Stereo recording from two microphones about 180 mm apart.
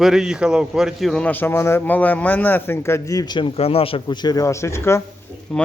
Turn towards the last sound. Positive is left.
turn(degrees=5)  # may be behind; listen again after turning